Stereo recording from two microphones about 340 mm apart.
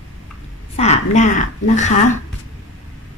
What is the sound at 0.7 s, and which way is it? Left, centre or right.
A woman's voice, centre.